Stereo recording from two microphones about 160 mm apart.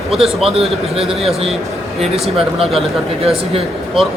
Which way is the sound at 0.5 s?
40° right (ahead or behind).